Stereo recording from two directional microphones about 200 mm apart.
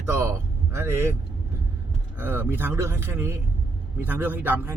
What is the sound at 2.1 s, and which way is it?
Speech, 10° right (ahead or behind).